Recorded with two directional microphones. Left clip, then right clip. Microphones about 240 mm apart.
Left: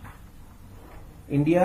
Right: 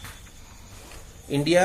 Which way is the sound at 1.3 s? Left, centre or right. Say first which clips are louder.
Right 1 dB; centre.